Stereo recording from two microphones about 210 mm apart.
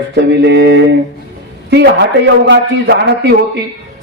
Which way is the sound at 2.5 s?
55° right (ahead or behind).